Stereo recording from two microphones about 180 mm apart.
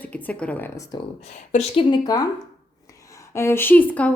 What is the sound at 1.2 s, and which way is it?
Speech, 40° left (ahead or behind).